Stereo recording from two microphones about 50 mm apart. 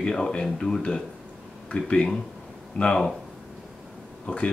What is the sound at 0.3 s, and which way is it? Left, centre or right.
Speech, centre.